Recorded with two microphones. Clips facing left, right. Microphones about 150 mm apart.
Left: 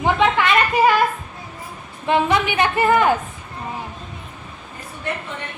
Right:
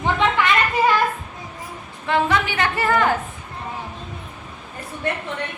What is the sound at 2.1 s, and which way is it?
A woman's voice, 20° left (ahead or behind).